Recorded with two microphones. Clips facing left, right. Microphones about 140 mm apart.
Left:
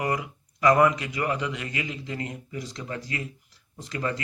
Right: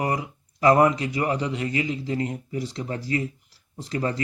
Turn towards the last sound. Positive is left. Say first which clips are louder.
# right 3 dB
turn(degrees=-30)  # may be behind; listen again after turning